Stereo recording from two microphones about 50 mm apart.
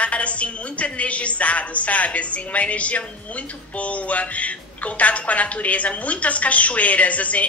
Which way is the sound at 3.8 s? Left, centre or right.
Left.